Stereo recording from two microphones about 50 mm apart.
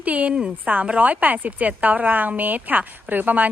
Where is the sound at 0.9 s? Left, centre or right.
Right.